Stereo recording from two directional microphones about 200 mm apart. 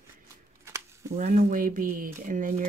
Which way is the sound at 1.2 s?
45° right (ahead or behind).